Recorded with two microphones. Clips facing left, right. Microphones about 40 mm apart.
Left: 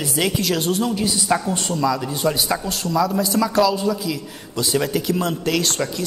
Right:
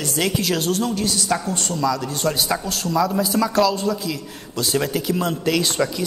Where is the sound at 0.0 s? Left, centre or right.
Centre.